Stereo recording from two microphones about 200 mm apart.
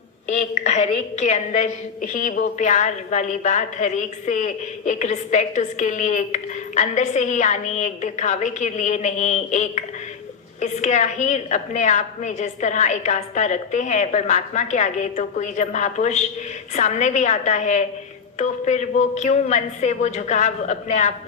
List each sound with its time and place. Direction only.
0.3 s a woman's voice: 35° left (ahead or behind)